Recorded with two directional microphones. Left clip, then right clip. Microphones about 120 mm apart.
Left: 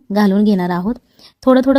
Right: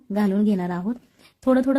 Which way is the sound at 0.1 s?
40° left (ahead or behind).